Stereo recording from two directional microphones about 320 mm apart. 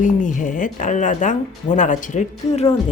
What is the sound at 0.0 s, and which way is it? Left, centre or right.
Speech, left.